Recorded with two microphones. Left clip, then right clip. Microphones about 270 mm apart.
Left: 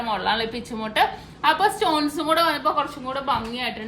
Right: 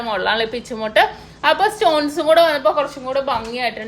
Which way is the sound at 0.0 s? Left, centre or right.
Right.